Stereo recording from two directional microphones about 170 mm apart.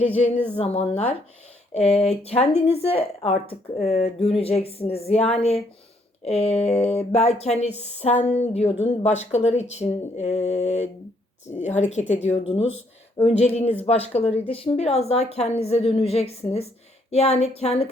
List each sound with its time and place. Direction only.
0.5 s speech: 35° left (ahead or behind)